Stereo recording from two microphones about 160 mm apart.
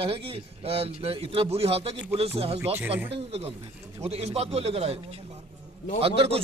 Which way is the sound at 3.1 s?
40° right (ahead or behind).